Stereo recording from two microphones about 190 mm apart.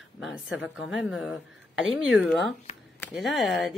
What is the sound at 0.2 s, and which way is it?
A woman's voice, 5° right (ahead or behind).